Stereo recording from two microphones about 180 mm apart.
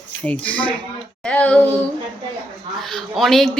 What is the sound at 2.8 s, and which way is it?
Speech, centre (ahead or behind).